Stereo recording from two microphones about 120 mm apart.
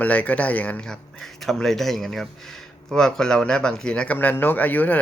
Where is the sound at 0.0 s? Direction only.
10° left (ahead or behind).